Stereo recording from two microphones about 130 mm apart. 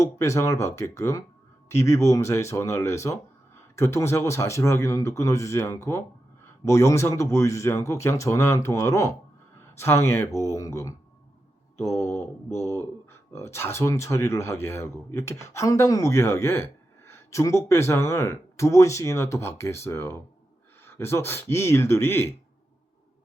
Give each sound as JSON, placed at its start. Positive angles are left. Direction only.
{"t": 0.0, "sound": "speech", "side_deg": 20}